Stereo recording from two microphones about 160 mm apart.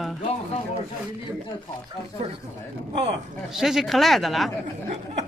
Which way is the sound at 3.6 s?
5° right (ahead or behind).